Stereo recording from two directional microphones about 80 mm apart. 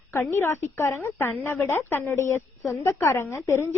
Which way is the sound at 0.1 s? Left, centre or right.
Left.